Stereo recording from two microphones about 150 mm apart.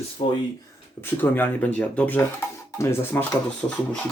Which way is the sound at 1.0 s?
15° left (ahead or behind).